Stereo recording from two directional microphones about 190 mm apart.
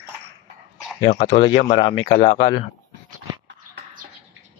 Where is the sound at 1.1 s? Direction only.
35° left (ahead or behind).